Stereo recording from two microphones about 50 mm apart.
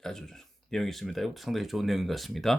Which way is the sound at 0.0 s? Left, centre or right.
Centre.